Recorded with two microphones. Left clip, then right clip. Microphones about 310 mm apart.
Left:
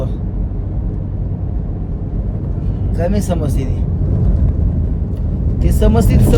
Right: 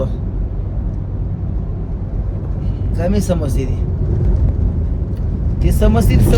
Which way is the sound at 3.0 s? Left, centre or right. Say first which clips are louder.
Even; centre.